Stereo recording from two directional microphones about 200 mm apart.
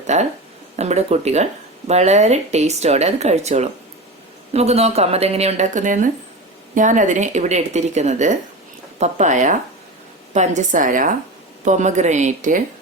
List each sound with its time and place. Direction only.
0.1 s speech: 35° right (ahead or behind)